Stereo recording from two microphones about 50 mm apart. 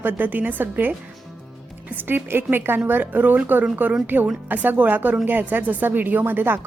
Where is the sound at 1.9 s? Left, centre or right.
Right.